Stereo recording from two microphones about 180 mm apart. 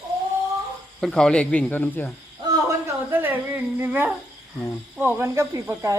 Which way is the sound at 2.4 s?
20° right (ahead or behind).